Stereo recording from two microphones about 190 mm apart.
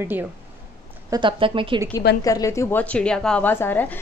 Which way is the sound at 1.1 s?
25° right (ahead or behind).